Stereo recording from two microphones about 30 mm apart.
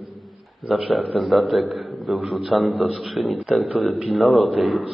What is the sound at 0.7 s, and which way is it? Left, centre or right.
A man's voice, centre.